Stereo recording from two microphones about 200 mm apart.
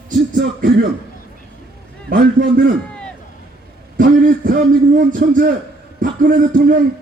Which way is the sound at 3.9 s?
45° right (ahead or behind).